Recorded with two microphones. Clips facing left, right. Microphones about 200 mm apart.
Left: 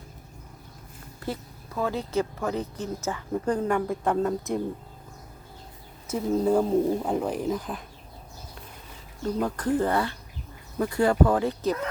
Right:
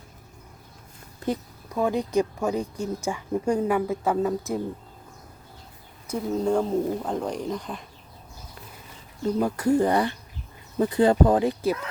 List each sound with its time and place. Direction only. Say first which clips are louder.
1.2 s speech: right 5 dB; 15° right (ahead or behind)
6.1 s speech: left 1 dB; 5° left (ahead or behind)
9.2 s speech: right 4 dB; 10° right (ahead or behind)